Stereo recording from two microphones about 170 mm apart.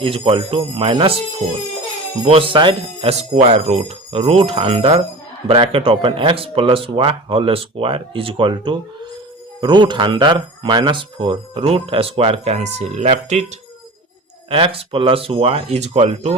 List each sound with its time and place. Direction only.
0.0 s speech: 35° right (ahead or behind)
2.2 s speech: 35° right (ahead or behind)
14.5 s speech: 30° right (ahead or behind)